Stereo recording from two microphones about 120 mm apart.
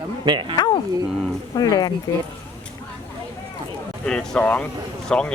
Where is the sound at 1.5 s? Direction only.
35° left (ahead or behind).